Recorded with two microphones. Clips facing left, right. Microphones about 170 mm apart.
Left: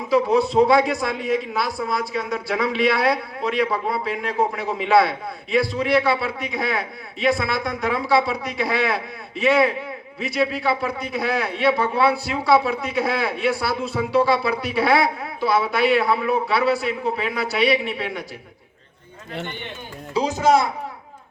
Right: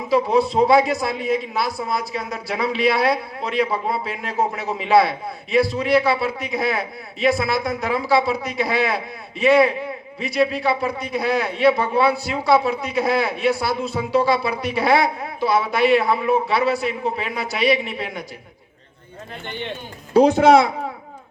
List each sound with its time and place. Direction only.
0.1 s a man's voice: centre (ahead or behind)
20.1 s a child's voice: 60° right (ahead or behind)